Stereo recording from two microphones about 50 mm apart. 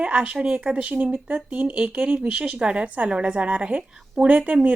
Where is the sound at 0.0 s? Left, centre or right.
Right.